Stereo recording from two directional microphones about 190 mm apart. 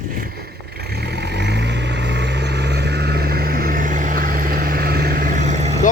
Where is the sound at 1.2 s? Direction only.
60° right (ahead or behind); by 5.7 s 40° right (ahead or behind).